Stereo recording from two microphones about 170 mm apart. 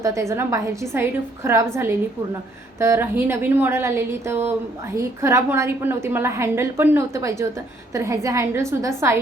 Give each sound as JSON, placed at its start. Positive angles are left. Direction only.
{"t": 0.0, "sound": "a woman's voice", "side_deg": -15}